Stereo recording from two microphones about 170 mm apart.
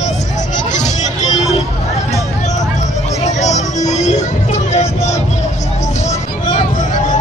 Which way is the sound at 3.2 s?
45° left (ahead or behind).